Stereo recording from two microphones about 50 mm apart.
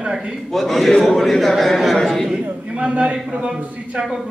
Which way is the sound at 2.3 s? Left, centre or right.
Right.